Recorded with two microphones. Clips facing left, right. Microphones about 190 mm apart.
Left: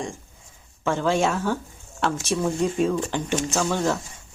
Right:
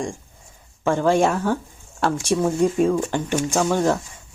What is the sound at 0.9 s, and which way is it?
A woman's voice, 15° right (ahead or behind).